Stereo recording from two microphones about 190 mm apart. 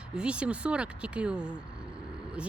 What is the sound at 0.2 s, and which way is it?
Speech, 5° right (ahead or behind).